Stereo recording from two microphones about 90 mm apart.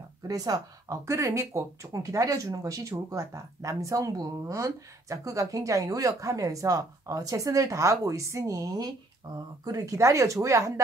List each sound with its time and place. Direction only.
0.3 s speech: 40° right (ahead or behind)